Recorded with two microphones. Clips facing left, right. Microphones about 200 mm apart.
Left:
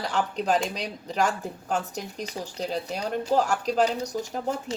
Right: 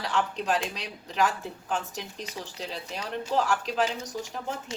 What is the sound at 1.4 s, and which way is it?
Speech, 40° left (ahead or behind).